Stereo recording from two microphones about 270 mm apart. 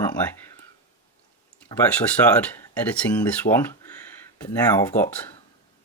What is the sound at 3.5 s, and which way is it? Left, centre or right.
Speech, left.